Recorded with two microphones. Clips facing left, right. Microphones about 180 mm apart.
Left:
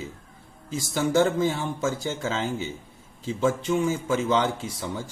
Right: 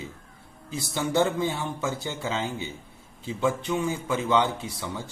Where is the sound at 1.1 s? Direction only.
40° left (ahead or behind).